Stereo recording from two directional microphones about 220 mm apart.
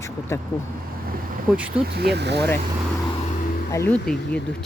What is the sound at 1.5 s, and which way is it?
Speech, 5° right (ahead or behind).